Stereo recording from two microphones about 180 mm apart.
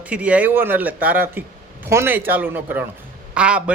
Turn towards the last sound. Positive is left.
turn(degrees=-5)  # may be behind; listen again after turning